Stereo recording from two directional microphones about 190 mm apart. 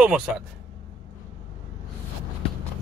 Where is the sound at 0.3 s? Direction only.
Centre (ahead or behind).